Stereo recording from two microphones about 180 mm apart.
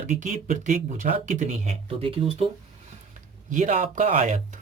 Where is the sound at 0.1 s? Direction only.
45° right (ahead or behind).